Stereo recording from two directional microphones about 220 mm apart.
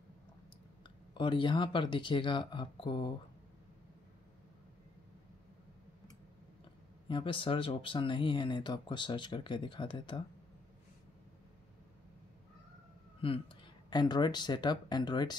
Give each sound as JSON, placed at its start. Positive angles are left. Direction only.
{"t": 0.8, "sound": "speech", "side_deg": 20}
{"t": 7.1, "sound": "speech", "side_deg": 20}
{"t": 13.2, "sound": "speech", "side_deg": 25}